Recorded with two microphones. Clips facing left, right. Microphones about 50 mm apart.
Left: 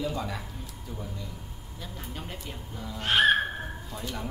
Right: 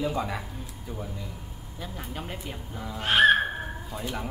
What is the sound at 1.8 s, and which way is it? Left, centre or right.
Speech, centre.